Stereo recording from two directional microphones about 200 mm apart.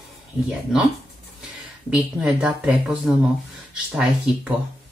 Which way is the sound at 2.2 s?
5° right (ahead or behind).